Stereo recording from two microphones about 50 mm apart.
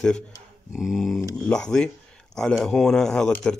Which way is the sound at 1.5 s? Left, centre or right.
Centre.